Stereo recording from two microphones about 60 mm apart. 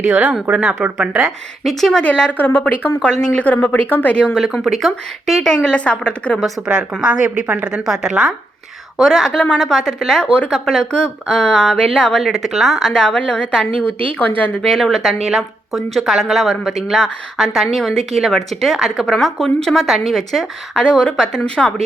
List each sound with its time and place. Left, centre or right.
0.0 s a woman's voice: right
2.0 s speech: centre
2.4 s speech: left
3.0 s speech: centre
3.4 s speech: left
4.1 s speech: centre
4.5 s speech: centre
5.5 s speech: centre
6.6 s a woman's voice: centre
9.0 s speech: centre
12.2 s speech: centre
12.9 s speech: centre
14.0 s speech: left
14.8 s speech: centre